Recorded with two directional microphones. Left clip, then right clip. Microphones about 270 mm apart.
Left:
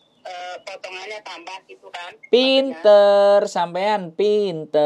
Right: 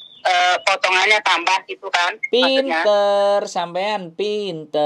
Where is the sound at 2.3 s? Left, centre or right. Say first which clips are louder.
Left 2 dB; centre.